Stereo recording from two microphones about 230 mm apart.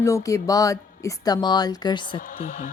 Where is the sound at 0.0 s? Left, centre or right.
Centre.